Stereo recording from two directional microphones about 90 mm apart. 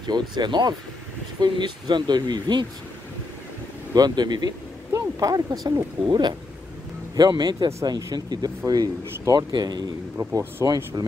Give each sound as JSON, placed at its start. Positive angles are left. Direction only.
{"t": 0.0, "sound": "speech", "side_deg": -55}
{"t": 3.9, "sound": "speech", "side_deg": -50}
{"t": 4.9, "sound": "a sound", "side_deg": -40}
{"t": 6.0, "sound": "speech", "side_deg": -55}